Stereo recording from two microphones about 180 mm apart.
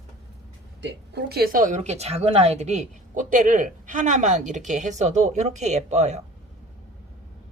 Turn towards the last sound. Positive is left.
turn(degrees=-40)  # may be behind; listen again after turning